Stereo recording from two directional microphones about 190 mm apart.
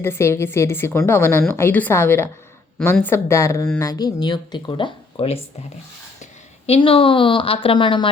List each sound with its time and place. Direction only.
0.0 s a woman's voice: 15° left (ahead or behind)
6.7 s speech: 30° left (ahead or behind)